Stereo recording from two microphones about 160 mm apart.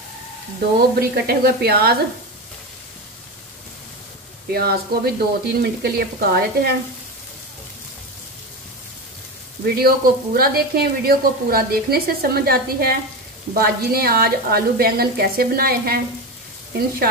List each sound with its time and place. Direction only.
0.7 s speech: 80° right
4.5 s speech: 75° right (ahead or behind)
9.8 s speech: 70° right (ahead or behind)